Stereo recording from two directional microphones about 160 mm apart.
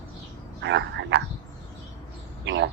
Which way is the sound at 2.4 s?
90° right.